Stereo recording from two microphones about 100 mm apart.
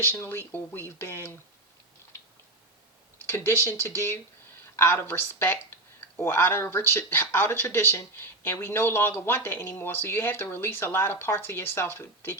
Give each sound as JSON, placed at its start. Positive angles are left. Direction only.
{"t": 0.0, "sound": "speech", "side_deg": 25}
{"t": 3.2, "sound": "speech", "side_deg": 20}